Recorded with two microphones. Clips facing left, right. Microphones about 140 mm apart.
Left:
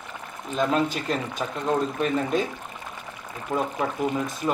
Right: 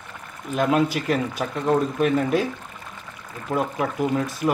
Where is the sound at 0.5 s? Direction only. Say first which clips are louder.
Right 3 dB; 5° right (ahead or behind).